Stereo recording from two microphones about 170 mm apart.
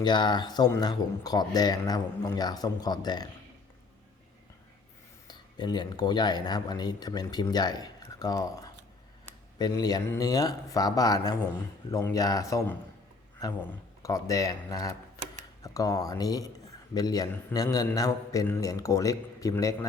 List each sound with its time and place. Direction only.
0.0 s speech: 25° left (ahead or behind)
5.3 s speech: 25° left (ahead or behind)